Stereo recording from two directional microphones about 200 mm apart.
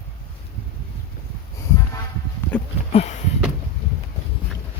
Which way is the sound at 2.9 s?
30° left (ahead or behind).